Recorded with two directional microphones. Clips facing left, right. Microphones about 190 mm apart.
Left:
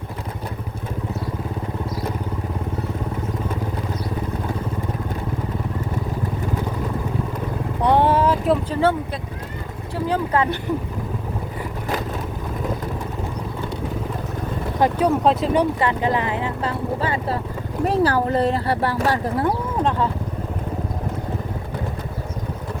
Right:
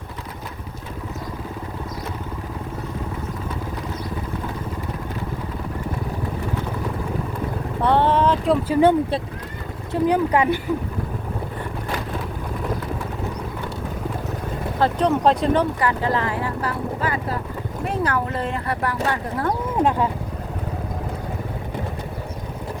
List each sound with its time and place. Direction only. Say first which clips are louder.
7.8 s a sound: left 1 dB; 15° left (ahead or behind)
8.7 s speech: right 4 dB; 15° right (ahead or behind)
14.8 s speech: left 1 dB; 10° left (ahead or behind)
15.8 s speech: left 1 dB; 20° left (ahead or behind)
19.8 s speech: right 2 dB; 10° right (ahead or behind)